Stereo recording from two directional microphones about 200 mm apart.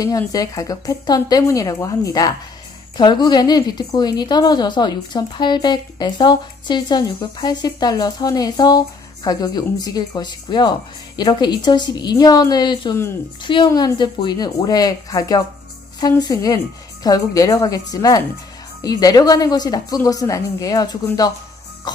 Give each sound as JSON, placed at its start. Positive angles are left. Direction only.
{"t": 0.0, "sound": "a woman's voice", "side_deg": 20}